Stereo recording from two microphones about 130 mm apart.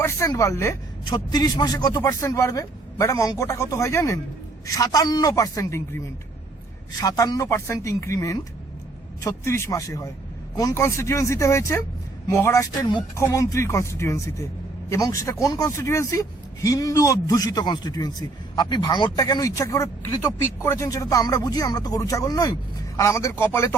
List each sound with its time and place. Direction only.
0.0 s speech: 25° left (ahead or behind)
1.0 s a man's voice: 35° left (ahead or behind)
7.0 s a man's voice: 30° left (ahead or behind)